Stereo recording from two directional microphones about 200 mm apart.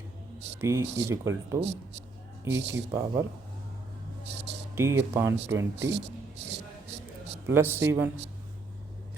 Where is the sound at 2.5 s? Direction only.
60° right (ahead or behind).